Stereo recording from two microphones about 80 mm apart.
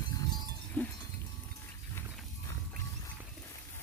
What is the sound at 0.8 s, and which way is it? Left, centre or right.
Goat, left.